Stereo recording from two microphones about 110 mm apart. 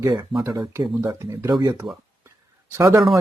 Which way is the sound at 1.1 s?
25° right (ahead or behind).